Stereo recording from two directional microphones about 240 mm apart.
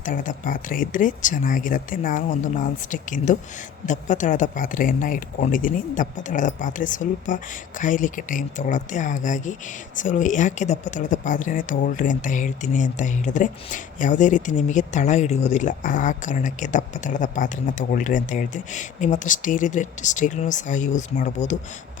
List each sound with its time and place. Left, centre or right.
0.0 s speech: left